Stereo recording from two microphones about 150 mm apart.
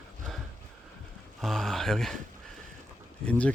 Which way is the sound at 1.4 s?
Centre (ahead or behind).